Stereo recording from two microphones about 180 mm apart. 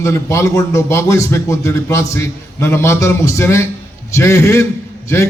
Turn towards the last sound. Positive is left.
turn(degrees=15)  # may be behind; listen again after turning